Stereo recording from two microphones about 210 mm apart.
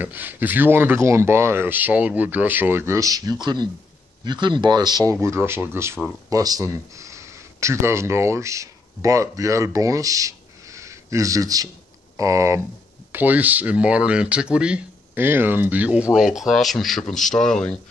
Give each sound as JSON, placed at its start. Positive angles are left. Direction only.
{"t": 0.0, "sound": "speech", "side_deg": -10}